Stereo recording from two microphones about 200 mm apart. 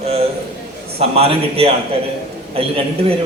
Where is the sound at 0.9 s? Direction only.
30° right (ahead or behind).